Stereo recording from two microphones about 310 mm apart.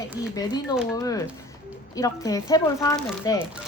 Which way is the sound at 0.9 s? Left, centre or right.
Centre.